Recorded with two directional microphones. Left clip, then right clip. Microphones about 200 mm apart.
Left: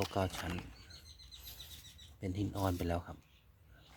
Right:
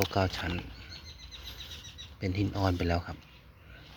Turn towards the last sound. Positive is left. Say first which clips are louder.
# right 6 dB
turn(degrees=5)  # may be behind; listen again after turning